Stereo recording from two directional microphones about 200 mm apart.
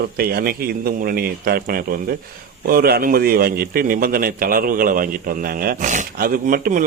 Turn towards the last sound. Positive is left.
turn(degrees=-45)  # may be behind; listen again after turning